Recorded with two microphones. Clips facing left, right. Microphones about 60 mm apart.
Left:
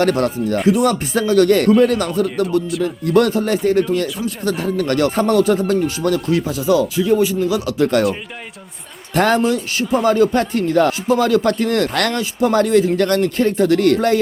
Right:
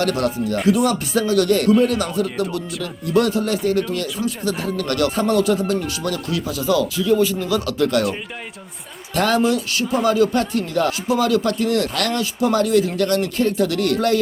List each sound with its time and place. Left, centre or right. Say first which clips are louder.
0.0 s speech: left 4 dB; left
0.6 s speech: left 2 dB; centre
0.9 s speech: left 2 dB; left
3.1 s speech: left 3 dB; left
6.6 s speech: left 1 dB; left
9.1 s speech: left 2 dB; left